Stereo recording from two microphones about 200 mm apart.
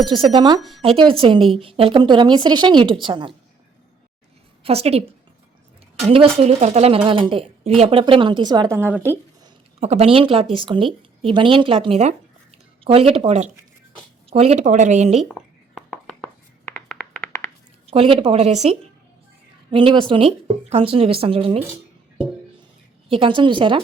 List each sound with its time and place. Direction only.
0.0 s a woman's voice: 25° right (ahead or behind)
4.6 s a woman's voice: 30° right (ahead or behind)
6.1 s a woman's voice: 30° right (ahead or behind)
8.7 s speech: 10° right (ahead or behind)
9.8 s a woman's voice: 30° right (ahead or behind)
15.2 s a sound: centre (ahead or behind)
17.9 s a woman's voice: 30° right (ahead or behind)
23.0 s a woman's voice: 25° right (ahead or behind)